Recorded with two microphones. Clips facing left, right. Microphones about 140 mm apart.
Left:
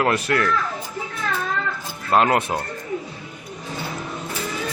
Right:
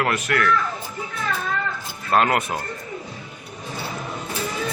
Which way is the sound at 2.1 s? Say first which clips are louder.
Left 2 dB; 25° left (ahead or behind).